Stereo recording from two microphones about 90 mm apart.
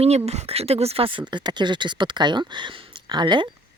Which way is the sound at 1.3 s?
55° right (ahead or behind).